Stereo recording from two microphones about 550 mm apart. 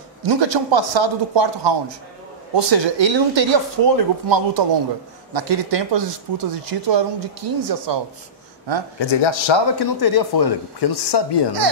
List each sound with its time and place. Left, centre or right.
0.2 s speech: right
9.2 s speech: left